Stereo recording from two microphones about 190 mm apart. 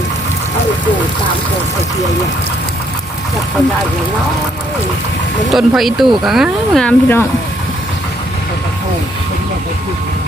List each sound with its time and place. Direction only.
5.5 s speech: centre (ahead or behind)